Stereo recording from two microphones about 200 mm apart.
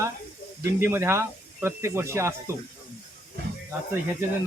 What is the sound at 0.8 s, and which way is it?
Speech, 10° right (ahead or behind).